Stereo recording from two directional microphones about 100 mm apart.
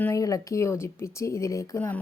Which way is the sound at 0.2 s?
35° left (ahead or behind).